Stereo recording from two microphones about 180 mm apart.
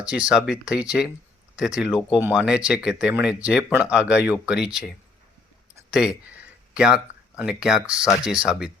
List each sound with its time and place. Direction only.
0.1 s speech: 5° right (ahead or behind)
5.9 s speech: 5° right (ahead or behind)